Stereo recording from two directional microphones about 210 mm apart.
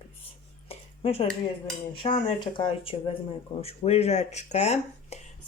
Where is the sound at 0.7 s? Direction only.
30° left (ahead or behind).